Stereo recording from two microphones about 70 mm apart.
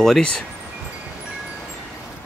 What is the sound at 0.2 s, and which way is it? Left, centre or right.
Speech, centre.